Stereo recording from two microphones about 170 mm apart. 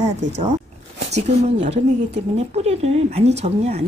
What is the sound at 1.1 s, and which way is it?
Speech, 40° right (ahead or behind).